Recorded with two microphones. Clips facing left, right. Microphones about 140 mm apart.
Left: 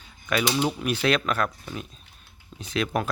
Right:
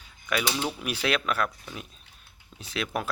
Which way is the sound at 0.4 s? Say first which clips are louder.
Left 8 dB; 15° left (ahead or behind).